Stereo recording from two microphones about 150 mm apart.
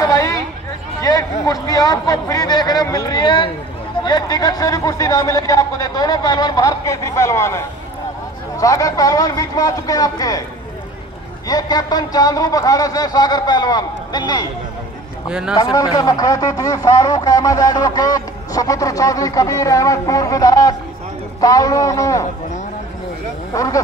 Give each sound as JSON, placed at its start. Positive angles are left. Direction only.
{"t": 0.0, "sound": "a sound", "side_deg": 25}
{"t": 4.0, "sound": "a man's voice", "side_deg": 30}
{"t": 11.4, "sound": "a man's voice", "side_deg": 25}
{"t": 15.2, "sound": "a man's voice", "side_deg": -5}
{"t": 15.5, "sound": "a man's voice", "side_deg": 25}
{"t": 23.5, "sound": "a man's voice", "side_deg": 20}